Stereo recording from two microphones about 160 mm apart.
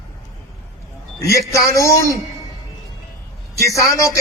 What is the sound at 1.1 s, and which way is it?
A man's voice, 20° left (ahead or behind).